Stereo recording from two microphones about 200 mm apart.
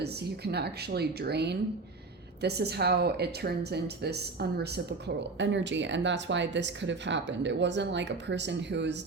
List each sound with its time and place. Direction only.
0.0 s a woman's voice: 55° right (ahead or behind)